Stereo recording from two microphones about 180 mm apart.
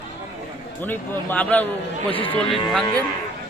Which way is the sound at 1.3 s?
10° left (ahead or behind).